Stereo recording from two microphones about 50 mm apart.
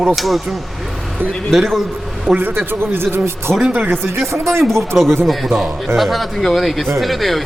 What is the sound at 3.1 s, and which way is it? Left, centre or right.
Speech, right.